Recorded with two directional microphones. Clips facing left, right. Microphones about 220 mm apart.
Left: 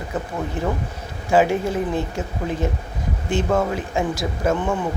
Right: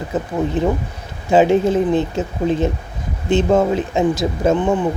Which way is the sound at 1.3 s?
20° right (ahead or behind).